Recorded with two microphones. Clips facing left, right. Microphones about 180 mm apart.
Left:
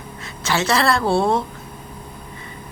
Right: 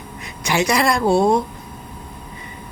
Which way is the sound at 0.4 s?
15° right (ahead or behind).